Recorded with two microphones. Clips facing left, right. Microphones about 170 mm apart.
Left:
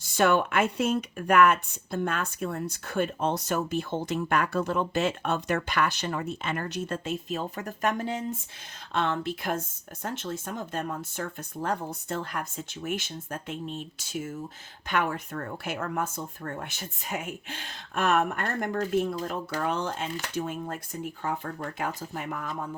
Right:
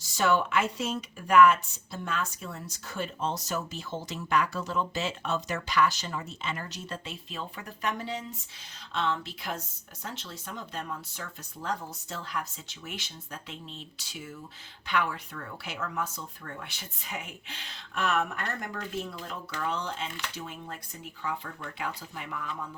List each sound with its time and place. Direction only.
0.0 s speech: 55° left (ahead or behind)